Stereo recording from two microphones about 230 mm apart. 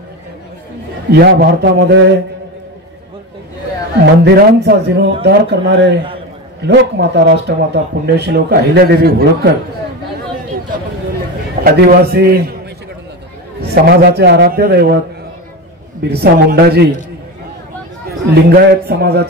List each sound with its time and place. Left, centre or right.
1.1 s speech: right
4.0 s speech: right
11.6 s speech: right
13.6 s speech: right
16.0 s speech: right
18.3 s speech: right